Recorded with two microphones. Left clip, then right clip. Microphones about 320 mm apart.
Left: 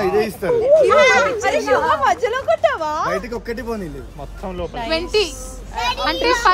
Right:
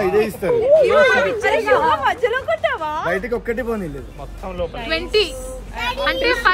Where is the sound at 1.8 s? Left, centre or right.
Left.